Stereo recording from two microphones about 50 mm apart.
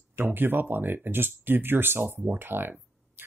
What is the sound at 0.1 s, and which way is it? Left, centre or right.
Speech, right.